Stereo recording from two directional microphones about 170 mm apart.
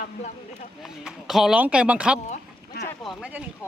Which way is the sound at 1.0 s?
Centre (ahead or behind).